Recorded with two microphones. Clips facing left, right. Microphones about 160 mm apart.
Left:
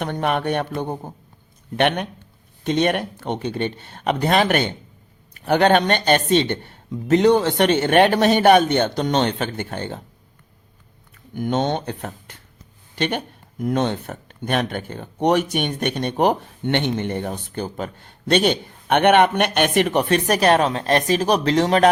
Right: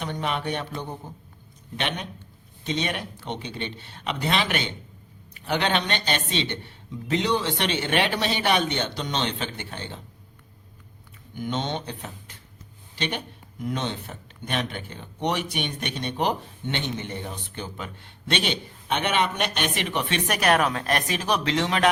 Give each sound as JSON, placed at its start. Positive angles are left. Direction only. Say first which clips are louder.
{"t": 0.0, "sound": "speech", "louder": "left 6 dB", "side_deg": 55}
{"t": 11.3, "sound": "speech", "louder": "left 7 dB", "side_deg": 50}